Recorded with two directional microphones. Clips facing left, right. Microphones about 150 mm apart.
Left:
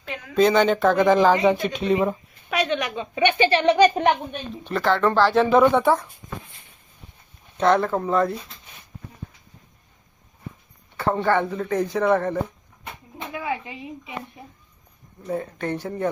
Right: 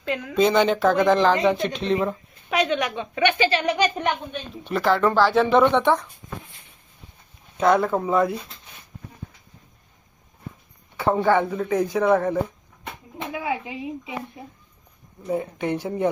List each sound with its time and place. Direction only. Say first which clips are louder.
0.3 s speech: left 1 dB; centre (ahead or behind)
2.5 s a woman's voice: right 1 dB; 20° right (ahead or behind)
3.3 s a child's voice: left 4 dB; 30° left (ahead or behind)
4.6 s speech: right 1 dB; 5° right (ahead or behind)
7.5 s speech: even; 5° right (ahead or behind)
10.9 s speech: right 2 dB; 10° right (ahead or behind)
15.3 s speech: right 2 dB; 15° right (ahead or behind)